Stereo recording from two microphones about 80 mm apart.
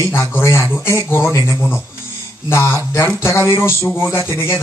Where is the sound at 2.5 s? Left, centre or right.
Left.